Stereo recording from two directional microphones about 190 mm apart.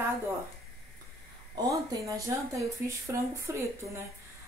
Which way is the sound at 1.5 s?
20° right (ahead or behind).